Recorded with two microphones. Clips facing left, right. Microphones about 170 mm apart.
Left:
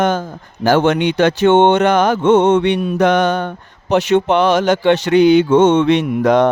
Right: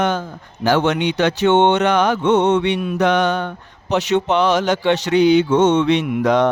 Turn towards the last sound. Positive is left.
turn(degrees=50)  # may be behind; listen again after turning